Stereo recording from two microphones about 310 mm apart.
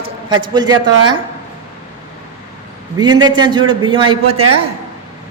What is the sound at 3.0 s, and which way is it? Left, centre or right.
A man's voice, centre.